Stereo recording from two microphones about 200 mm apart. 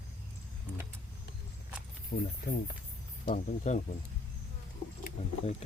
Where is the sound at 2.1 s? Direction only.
45° left (ahead or behind).